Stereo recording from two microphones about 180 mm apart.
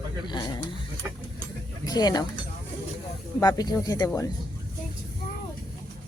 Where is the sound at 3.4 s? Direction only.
20° left (ahead or behind).